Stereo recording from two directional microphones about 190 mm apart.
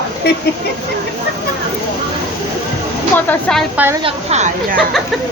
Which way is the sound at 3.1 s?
5° left (ahead or behind).